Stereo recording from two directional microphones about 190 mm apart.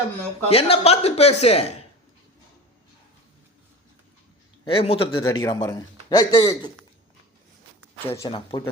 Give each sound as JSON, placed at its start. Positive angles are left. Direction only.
{"t": 0.4, "sound": "speech", "side_deg": 30}
{"t": 4.6, "sound": "a man's voice", "side_deg": 30}
{"t": 8.0, "sound": "a man's voice", "side_deg": 15}